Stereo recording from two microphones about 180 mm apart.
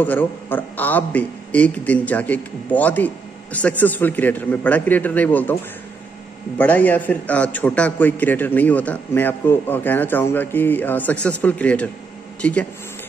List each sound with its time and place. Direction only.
0.0 s a man's voice: 10° left (ahead or behind)
6.6 s a man's voice: 10° left (ahead or behind)